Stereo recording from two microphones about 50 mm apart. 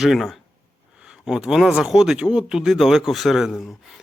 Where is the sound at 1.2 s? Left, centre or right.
Centre.